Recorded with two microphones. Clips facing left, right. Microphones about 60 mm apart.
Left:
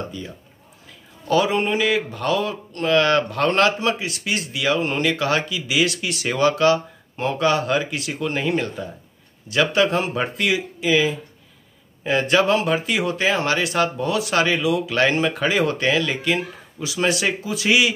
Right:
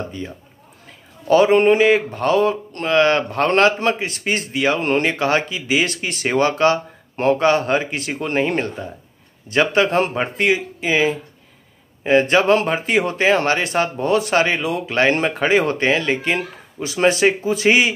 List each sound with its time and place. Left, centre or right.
0.8 s a man's voice: right
10.1 s a man's voice: right